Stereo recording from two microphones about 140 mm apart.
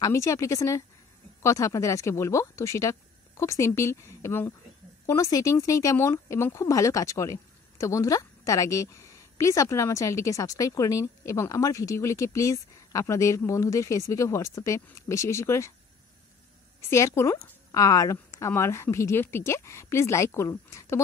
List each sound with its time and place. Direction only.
0.0 s speech: 20° left (ahead or behind)
16.8 s speech: 20° left (ahead or behind)